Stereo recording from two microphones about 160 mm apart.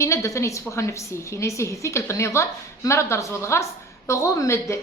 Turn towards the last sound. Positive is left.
turn(degrees=15)  # may be behind; listen again after turning